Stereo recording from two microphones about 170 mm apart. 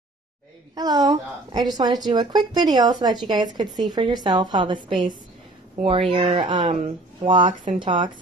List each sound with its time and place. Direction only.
0.7 s speech: 25° right (ahead or behind)